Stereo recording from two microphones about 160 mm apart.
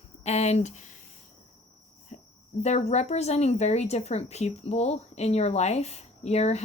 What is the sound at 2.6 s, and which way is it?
Speech, 45° left (ahead or behind).